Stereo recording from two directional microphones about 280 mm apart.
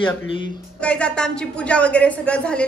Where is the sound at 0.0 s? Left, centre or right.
Centre.